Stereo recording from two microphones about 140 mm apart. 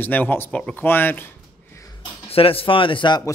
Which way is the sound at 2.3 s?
40° left (ahead or behind).